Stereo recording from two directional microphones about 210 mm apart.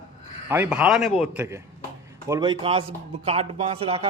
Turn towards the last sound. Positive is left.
turn(degrees=-25)  # may be behind; listen again after turning